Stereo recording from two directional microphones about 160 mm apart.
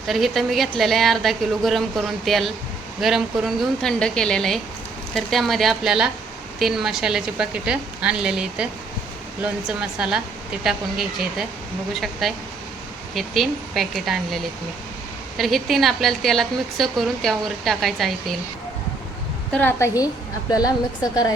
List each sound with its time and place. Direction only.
0.1 s a woman's voice: centre (ahead or behind)
19.5 s a woman's voice: 10° left (ahead or behind)
20.5 s speech: 25° left (ahead or behind)